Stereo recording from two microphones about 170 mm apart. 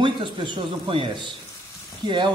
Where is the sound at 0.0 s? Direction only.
30° right (ahead or behind).